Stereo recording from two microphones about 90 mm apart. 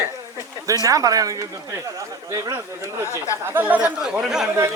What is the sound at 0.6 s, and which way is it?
Speech, 40° right (ahead or behind).